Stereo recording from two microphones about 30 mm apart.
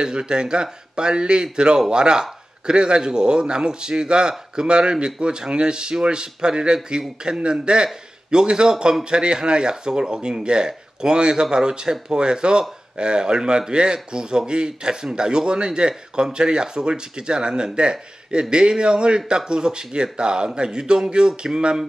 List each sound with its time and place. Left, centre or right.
0.0 s speech: right